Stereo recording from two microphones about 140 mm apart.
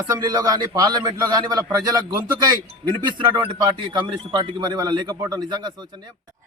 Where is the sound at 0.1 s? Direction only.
25° right (ahead or behind).